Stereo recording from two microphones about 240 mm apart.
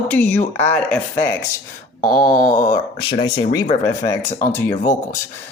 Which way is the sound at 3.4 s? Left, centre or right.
Centre.